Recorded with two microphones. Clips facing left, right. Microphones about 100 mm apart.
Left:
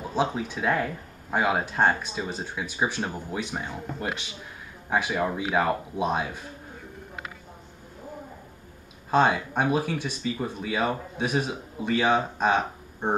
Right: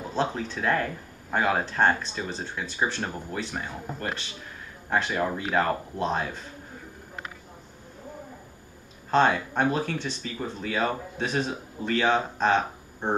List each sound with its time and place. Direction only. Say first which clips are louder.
0.1 s speech: left 1 dB; 10° left (ahead or behind)
9.1 s speech: even; 10° left (ahead or behind)